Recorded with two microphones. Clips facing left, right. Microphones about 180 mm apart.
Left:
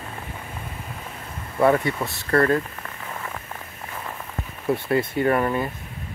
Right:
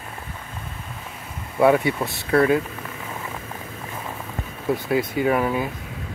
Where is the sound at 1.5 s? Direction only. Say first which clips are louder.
Right 2 dB; 5° right (ahead or behind).